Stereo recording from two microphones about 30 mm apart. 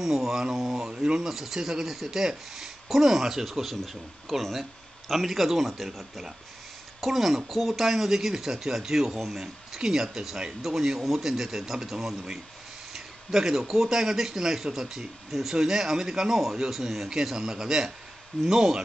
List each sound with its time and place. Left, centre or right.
0.0 s speech: centre
0.9 s speech: right
1.3 s speech: centre
3.4 s speech: centre
7.0 s speech: centre